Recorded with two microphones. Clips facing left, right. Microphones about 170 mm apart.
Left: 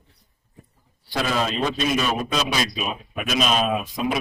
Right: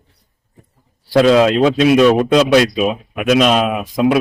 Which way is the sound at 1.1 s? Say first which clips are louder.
Right 14 dB; 80° right.